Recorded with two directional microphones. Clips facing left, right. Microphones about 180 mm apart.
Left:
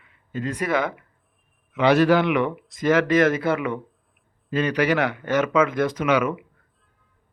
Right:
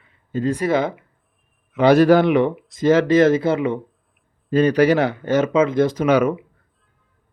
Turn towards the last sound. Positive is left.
turn(degrees=-35)  # may be behind; listen again after turning